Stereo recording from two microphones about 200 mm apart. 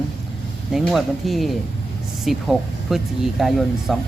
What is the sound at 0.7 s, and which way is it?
Speech, centre (ahead or behind).